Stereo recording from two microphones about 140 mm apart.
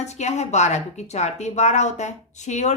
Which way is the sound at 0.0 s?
55° left (ahead or behind).